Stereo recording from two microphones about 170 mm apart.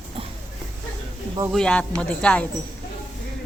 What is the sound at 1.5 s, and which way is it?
A woman's voice, 5° left (ahead or behind).